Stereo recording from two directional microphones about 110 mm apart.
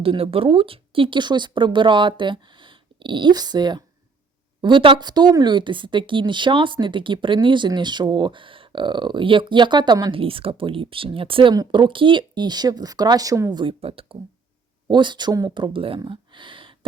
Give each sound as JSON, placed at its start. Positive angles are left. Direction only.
{"t": 0.0, "sound": "speech", "side_deg": -60}
{"t": 11.5, "sound": "speech", "side_deg": -40}
{"t": 13.6, "sound": "speech", "side_deg": -55}
{"t": 14.8, "sound": "speech", "side_deg": -45}
{"t": 16.0, "sound": "a sound", "side_deg": -45}